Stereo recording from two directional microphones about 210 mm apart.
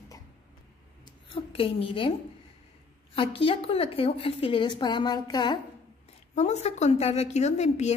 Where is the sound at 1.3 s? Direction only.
25° left (ahead or behind).